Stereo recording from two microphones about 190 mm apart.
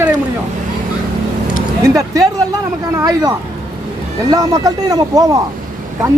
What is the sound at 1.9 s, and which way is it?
Speech, 15° right (ahead or behind).